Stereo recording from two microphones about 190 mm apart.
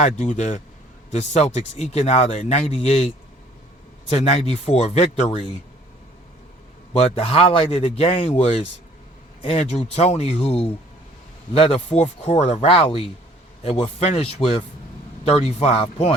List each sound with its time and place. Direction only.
0.0 s speech: 40° left (ahead or behind)
4.1 s speech: 35° left (ahead or behind)
6.9 s speech: 30° left (ahead or behind)